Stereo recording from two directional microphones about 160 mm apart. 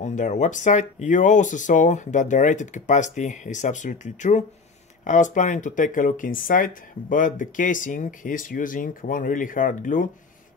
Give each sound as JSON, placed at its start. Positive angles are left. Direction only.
{"t": 0.0, "sound": "speech", "side_deg": 50}